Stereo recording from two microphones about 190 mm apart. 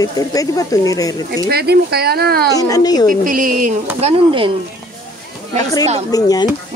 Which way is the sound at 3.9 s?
30° right (ahead or behind).